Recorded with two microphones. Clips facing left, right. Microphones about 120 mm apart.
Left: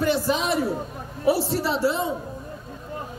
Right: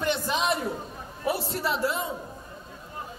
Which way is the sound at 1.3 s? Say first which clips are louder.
Left 6 dB; 30° left (ahead or behind).